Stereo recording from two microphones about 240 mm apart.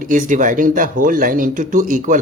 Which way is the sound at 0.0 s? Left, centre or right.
Right.